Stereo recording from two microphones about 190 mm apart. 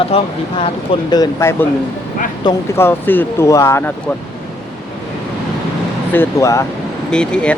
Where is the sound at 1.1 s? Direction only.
20° left (ahead or behind).